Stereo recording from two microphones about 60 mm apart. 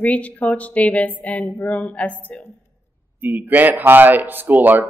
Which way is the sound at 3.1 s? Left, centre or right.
Right.